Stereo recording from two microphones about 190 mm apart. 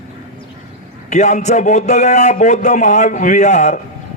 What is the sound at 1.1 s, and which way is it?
Speech, 40° left (ahead or behind).